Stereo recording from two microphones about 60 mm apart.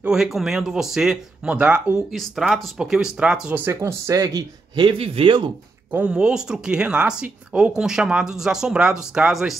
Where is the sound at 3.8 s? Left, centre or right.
Right.